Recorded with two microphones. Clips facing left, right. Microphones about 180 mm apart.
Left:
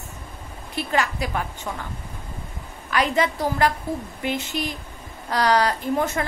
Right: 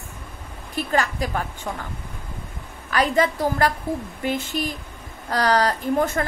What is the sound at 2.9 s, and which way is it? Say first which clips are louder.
Speech: right 2 dB; 45° right (ahead or behind).